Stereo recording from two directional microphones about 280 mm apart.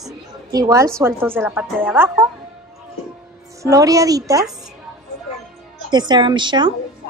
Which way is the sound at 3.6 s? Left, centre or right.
Centre.